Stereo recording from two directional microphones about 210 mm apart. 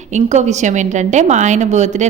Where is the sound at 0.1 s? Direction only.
35° right (ahead or behind).